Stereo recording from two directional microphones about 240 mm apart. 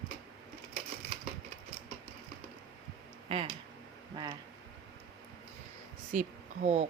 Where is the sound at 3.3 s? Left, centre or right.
Right.